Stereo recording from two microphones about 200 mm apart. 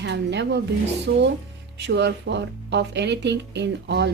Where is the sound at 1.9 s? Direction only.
60° right (ahead or behind).